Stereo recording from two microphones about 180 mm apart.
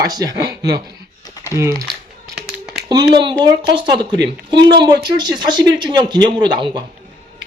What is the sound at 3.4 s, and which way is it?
Speech, 25° right (ahead or behind).